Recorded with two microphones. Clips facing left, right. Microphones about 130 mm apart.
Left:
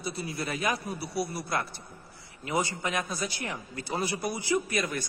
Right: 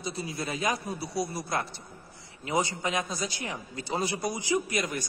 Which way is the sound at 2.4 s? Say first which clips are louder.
Right 1 dB; 25° right (ahead or behind).